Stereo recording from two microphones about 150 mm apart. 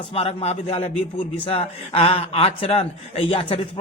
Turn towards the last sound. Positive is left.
turn(degrees=40)  # may be behind; listen again after turning